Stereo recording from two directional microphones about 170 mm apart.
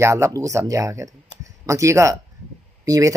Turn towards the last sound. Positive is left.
turn(degrees=-20)  # may be behind; listen again after turning